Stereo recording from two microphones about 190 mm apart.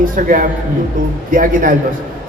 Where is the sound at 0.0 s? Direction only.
45° right (ahead or behind).